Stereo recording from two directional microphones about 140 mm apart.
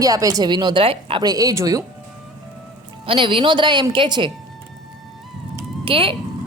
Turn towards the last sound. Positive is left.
turn(degrees=-40)  # may be behind; listen again after turning